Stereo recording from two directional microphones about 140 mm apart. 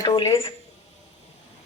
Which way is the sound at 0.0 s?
25° left (ahead or behind).